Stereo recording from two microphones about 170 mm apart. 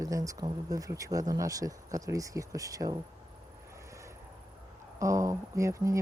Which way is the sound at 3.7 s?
15° right (ahead or behind).